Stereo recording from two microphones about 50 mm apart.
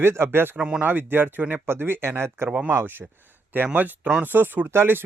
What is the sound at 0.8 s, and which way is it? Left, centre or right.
Speech, right.